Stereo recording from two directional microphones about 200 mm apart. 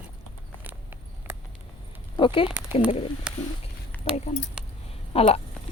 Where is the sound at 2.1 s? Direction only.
25° left (ahead or behind).